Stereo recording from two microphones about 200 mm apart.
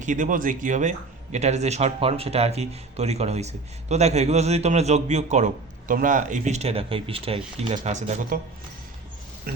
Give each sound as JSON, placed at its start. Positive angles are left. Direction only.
{"t": 0.0, "sound": "speech", "side_deg": -40}